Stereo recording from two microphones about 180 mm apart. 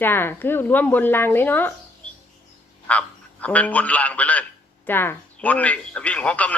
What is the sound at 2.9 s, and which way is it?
Speech, 10° left (ahead or behind).